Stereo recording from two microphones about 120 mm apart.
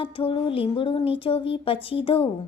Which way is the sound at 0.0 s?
50° left (ahead or behind).